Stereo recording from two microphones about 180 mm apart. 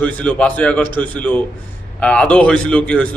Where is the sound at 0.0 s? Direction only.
5° left (ahead or behind).